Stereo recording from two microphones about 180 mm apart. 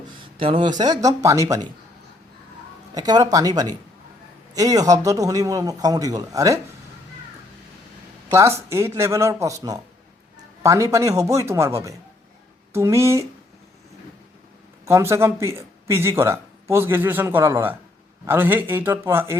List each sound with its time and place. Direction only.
0.3 s a man's voice: 30° right (ahead or behind)
2.9 s a man's voice: 20° right (ahead or behind)
8.3 s speech: 15° right (ahead or behind)
14.8 s speech: 15° right (ahead or behind)